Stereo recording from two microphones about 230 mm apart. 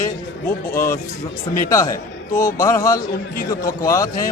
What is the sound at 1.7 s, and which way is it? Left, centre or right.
A man's voice, centre.